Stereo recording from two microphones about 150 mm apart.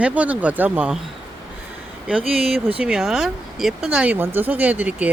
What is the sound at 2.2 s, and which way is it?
Speech, 40° right (ahead or behind).